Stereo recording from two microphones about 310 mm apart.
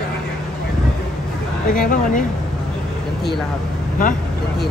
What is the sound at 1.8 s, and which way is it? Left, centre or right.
Speech, left.